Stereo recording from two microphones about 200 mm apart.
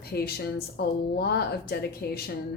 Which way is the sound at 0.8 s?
55° left (ahead or behind).